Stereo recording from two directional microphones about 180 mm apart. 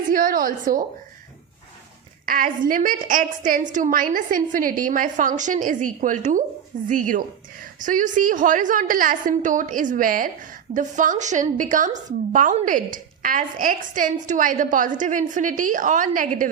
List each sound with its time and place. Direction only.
0.1 s a woman's voice: 50° right (ahead or behind)
2.2 s a woman's voice: 50° right (ahead or behind)